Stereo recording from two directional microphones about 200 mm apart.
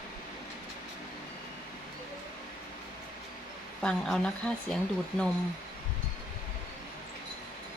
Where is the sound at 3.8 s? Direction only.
5° left (ahead or behind).